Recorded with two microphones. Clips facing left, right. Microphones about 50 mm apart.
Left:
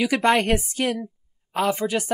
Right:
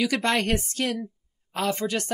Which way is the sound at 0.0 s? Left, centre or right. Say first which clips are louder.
Left 4 dB; centre.